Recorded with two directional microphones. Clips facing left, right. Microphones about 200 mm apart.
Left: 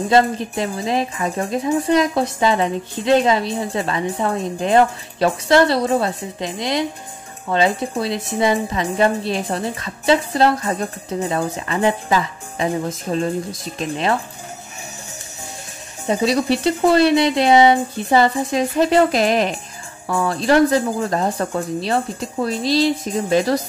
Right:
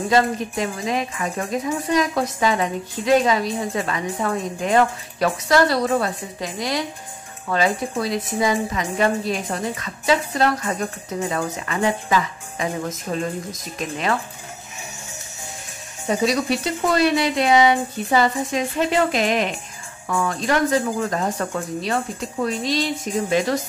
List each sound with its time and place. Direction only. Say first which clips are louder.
0.1 s speech: left 3 dB; 30° left (ahead or behind)
16.1 s speech: left 3 dB; 30° left (ahead or behind)